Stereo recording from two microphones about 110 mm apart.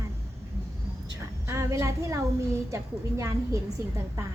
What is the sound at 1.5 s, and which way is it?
A woman's voice, 25° right (ahead or behind).